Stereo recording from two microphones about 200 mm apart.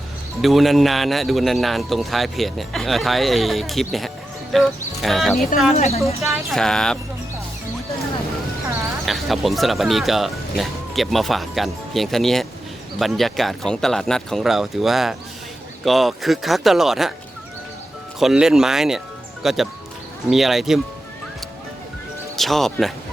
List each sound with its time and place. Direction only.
0.4 s a man's voice: centre (ahead or behind)
5.7 s speech: 30° left (ahead or behind)
6.5 s a man's voice: 5° left (ahead or behind)
9.0 s a man's voice: centre (ahead or behind)
18.2 s a man's voice: centre (ahead or behind)
22.4 s a man's voice: centre (ahead or behind)